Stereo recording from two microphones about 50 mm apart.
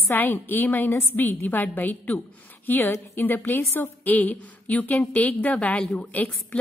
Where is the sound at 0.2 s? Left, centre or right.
Left.